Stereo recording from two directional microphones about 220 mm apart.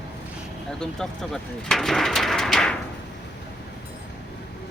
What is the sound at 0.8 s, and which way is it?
Speech, 5° left (ahead or behind).